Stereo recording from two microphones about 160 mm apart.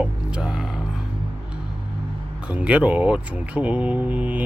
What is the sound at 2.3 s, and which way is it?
Speech, 5° right (ahead or behind).